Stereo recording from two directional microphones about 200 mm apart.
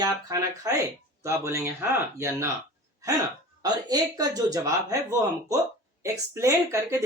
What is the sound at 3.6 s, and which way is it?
Speech, 20° right (ahead or behind).